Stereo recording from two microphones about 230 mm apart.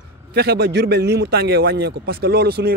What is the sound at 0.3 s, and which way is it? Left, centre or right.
Speech, right.